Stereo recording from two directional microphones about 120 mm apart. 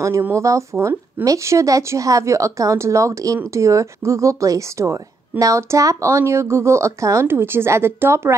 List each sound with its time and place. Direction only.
0.0 s speech: 25° right (ahead or behind)